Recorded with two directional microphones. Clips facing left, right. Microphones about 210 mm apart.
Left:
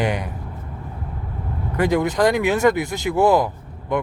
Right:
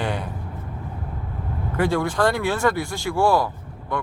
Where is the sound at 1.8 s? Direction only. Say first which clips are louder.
Left 3 dB; 20° left (ahead or behind).